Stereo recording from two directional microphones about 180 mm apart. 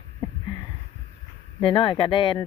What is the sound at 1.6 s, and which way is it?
Speech, 30° left (ahead or behind).